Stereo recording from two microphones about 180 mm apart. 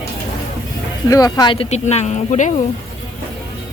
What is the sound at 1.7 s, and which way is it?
Speech, 40° left (ahead or behind).